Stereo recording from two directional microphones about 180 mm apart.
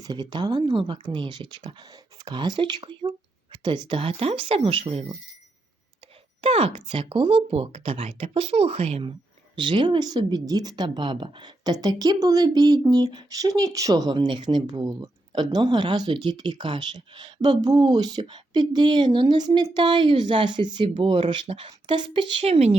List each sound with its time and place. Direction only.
0.0 s speech: 25° right (ahead or behind)
6.4 s speech: 30° right (ahead or behind)